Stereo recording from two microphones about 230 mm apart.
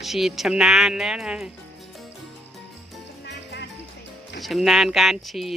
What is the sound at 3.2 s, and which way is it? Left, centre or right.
Music, left.